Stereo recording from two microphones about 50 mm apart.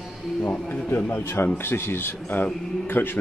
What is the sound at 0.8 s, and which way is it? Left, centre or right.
Speech, left.